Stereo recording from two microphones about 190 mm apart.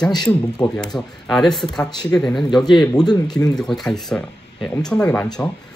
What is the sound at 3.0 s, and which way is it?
Speech, 20° left (ahead or behind).